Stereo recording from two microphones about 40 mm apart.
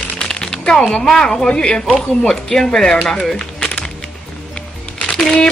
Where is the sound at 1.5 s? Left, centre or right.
Left.